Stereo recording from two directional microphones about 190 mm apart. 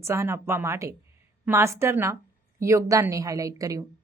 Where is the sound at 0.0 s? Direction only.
15° right (ahead or behind).